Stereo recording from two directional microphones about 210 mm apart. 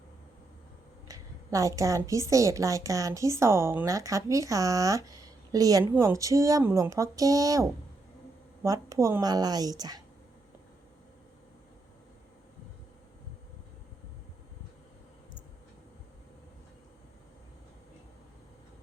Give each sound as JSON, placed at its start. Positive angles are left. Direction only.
{"t": 1.0, "sound": "a woman's voice", "side_deg": -15}